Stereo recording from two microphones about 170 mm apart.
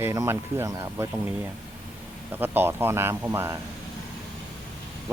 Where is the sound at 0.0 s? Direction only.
15° right (ahead or behind).